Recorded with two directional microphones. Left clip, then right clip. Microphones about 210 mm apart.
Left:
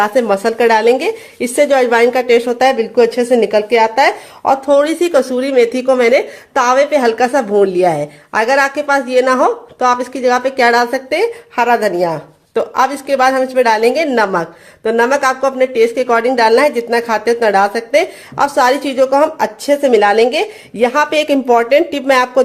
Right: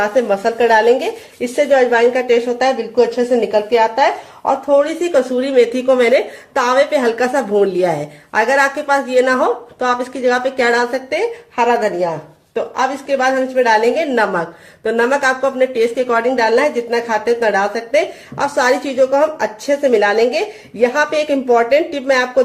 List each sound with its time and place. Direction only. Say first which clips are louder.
0.0 s a woman's voice: left 2 dB; 40° left (ahead or behind)